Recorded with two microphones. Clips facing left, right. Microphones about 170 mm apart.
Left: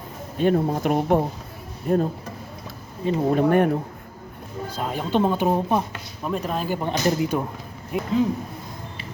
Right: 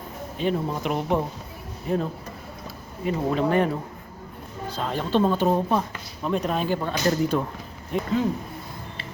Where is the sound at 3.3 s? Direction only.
50° left (ahead or behind).